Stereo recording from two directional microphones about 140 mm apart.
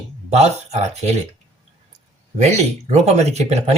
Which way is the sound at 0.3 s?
50° right (ahead or behind).